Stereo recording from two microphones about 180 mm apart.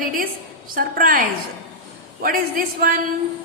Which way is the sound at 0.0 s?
50° right (ahead or behind).